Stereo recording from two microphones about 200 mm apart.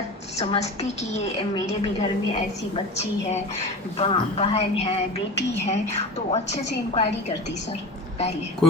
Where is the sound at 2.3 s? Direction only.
30° left (ahead or behind).